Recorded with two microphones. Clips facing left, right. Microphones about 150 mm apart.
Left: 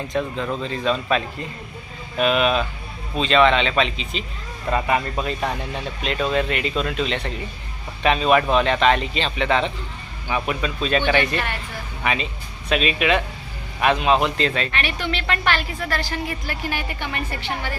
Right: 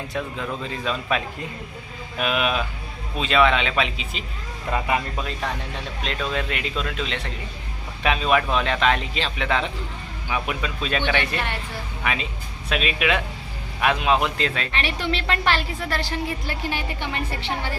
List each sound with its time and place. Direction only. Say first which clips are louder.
0.1 s a man's voice: left 5 dB; 5° right (ahead or behind)
5.1 s a man's voice: left 4 dB; 5° left (ahead or behind)
14.8 s a woman's voice: even; 30° right (ahead or behind)